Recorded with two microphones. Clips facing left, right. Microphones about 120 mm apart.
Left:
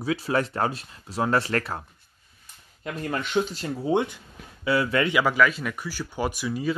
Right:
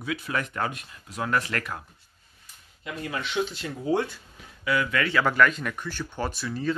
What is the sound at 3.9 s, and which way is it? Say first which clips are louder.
Speech: left 2 dB; 20° left (ahead or behind).